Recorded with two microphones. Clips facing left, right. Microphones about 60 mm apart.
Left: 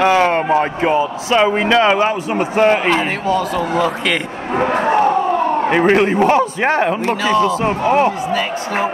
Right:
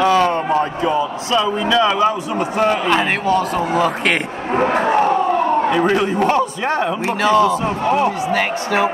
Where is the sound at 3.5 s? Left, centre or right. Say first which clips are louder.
Even; right.